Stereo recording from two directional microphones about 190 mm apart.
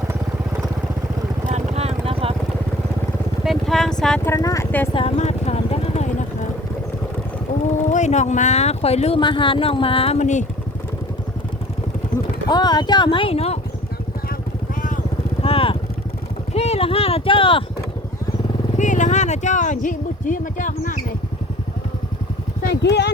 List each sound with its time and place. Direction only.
1.5 s vehicle: 35° right (ahead or behind)
3.4 s vehicle: centre (ahead or behind)
4.3 s speech: 15° left (ahead or behind)
4.9 s vehicle: 35° left (ahead or behind)
7.9 s speech: 40° left (ahead or behind)
12.1 s clip-clop: 40° left (ahead or behind)
12.5 s speech: 20° left (ahead or behind)
15.4 s vehicle: 30° left (ahead or behind)
16.6 s clip-clop: 30° left (ahead or behind)
18.8 s a sound: 40° left (ahead or behind)
22.7 s speech: 65° left (ahead or behind)